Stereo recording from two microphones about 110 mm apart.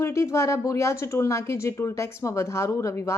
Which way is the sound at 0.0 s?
25° left (ahead or behind).